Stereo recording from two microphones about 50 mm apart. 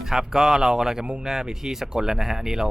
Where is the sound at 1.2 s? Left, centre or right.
Centre.